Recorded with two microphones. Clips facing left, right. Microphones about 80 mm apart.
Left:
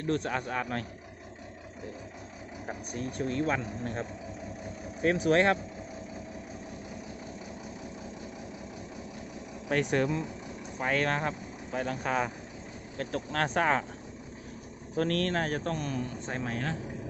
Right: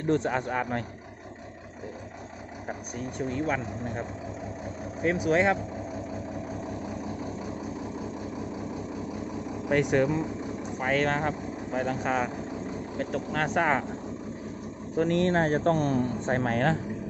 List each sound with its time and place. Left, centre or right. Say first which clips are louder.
0.0 s a man's voice: right 5 dB; right
2.6 s speech: right 1 dB; centre
5.2 s speech: right 1 dB; centre
9.9 s speech: right 4 dB; centre
14.9 s speech: right 4 dB; centre
15.3 s speech: right 7 dB; right